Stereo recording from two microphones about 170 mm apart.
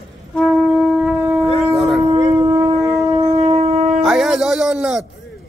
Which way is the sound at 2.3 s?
20° right (ahead or behind).